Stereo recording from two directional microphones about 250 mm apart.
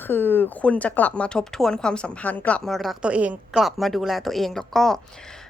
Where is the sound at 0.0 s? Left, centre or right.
Centre.